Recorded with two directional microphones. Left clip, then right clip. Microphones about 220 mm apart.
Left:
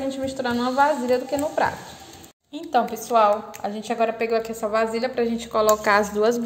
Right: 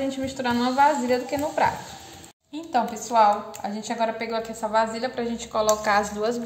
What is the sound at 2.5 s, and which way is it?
A woman's voice, 35° left (ahead or behind).